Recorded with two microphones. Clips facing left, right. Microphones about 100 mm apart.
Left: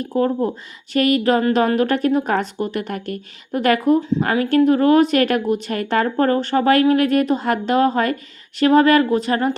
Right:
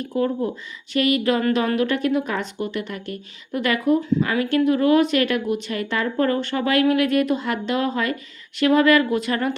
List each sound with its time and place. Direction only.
0.0 s a woman's voice: 40° left (ahead or behind)